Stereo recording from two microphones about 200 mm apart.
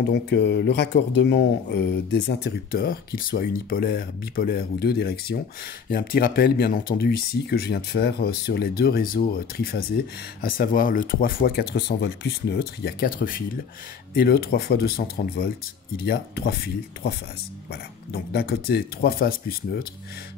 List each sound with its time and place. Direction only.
0.1 s speech: 60° left (ahead or behind)